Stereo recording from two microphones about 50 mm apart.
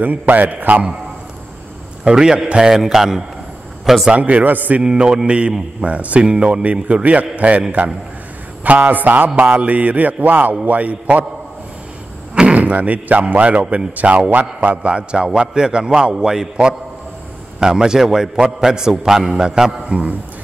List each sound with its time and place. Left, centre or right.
0.0 s a man's voice: right
2.0 s a man's voice: centre
4.1 s a man's voice: right
4.8 s a man's voice: centre
8.6 s a man's voice: right
12.5 s a man's voice: right; by 20.0 s centre